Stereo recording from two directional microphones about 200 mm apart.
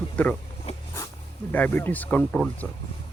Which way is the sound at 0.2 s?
5° left (ahead or behind).